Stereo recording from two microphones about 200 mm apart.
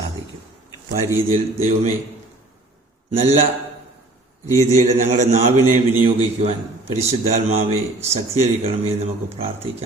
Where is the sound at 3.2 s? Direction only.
30° right (ahead or behind).